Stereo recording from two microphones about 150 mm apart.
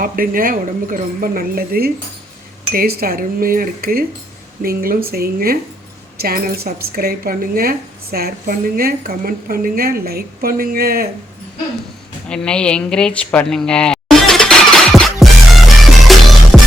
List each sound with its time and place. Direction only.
0.0 s a woman's voice: 70° right (ahead or behind)
5.0 s a woman's voice: 90° right
12.3 s a sound: 5° left (ahead or behind)
16.1 s music: centre (ahead or behind)